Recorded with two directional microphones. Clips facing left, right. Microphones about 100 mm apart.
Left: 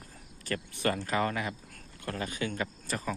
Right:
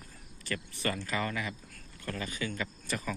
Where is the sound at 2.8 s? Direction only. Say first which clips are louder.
Right 1 dB; 35° left (ahead or behind).